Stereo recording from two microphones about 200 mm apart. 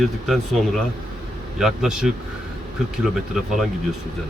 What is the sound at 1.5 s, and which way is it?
A man's voice, centre (ahead or behind).